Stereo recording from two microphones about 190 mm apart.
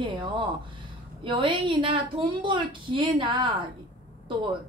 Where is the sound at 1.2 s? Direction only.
25° right (ahead or behind).